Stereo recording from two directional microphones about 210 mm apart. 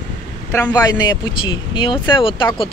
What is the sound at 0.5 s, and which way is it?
Speech, 15° left (ahead or behind).